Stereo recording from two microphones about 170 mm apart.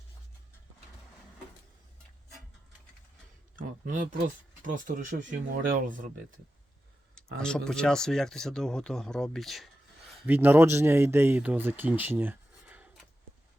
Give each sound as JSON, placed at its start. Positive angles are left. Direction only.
{"t": 3.8, "sound": "speech", "side_deg": -50}
{"t": 7.3, "sound": "speech", "side_deg": 5}
{"t": 10.2, "sound": "speech", "side_deg": -10}